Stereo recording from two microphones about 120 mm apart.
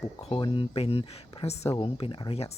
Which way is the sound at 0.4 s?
45° left (ahead or behind).